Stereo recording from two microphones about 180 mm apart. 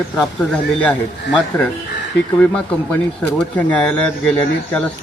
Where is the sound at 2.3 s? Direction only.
5° left (ahead or behind).